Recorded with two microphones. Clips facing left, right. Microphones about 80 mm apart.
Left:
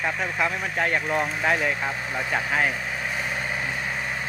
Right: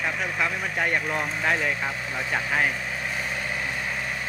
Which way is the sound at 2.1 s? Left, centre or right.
Centre.